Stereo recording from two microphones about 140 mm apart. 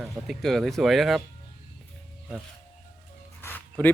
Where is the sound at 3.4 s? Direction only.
15° left (ahead or behind).